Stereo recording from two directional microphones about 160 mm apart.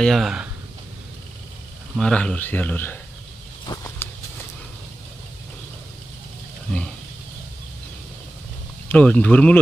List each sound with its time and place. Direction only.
0.0 s speech: centre (ahead or behind)
2.0 s a man's voice: 5° left (ahead or behind)
3.6 s walk: 20° left (ahead or behind)
8.8 s a man's voice: 10° left (ahead or behind)